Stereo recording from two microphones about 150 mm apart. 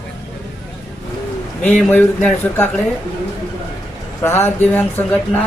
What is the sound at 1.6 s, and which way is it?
Speech, 10° left (ahead or behind).